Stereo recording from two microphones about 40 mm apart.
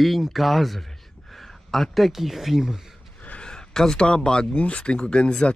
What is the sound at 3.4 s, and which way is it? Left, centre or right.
Speech, centre.